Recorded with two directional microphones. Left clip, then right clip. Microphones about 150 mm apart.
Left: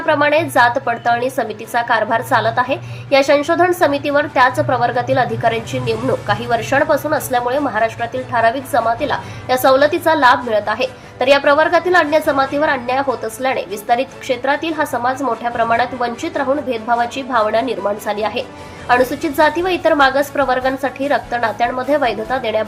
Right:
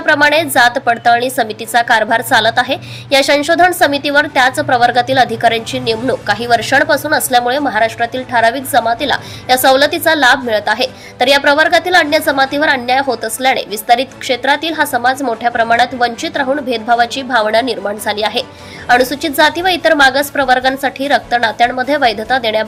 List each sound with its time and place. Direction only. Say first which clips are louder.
0.0 s a woman's voice: right 4 dB; 25° right (ahead or behind)